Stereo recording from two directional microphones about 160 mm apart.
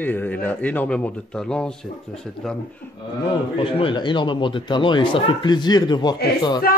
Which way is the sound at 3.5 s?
35° left (ahead or behind).